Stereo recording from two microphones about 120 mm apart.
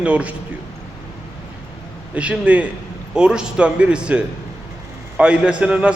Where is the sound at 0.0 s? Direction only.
10° right (ahead or behind).